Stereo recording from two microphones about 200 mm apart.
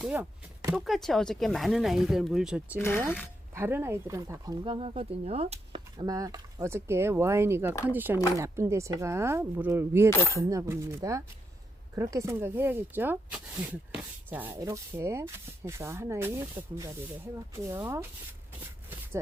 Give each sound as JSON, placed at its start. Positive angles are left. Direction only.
{"t": 0.0, "sound": "chopping", "side_deg": -10}
{"t": 0.9, "sound": "speech", "side_deg": 0}
{"t": 2.7, "sound": "speech", "side_deg": 10}
{"t": 3.5, "sound": "speech", "side_deg": -10}